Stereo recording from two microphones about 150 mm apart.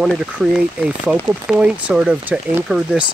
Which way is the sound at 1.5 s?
5° right (ahead or behind).